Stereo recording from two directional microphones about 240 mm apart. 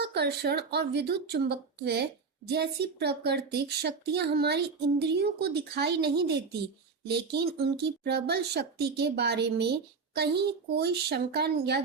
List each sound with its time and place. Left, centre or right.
0.0 s speech: right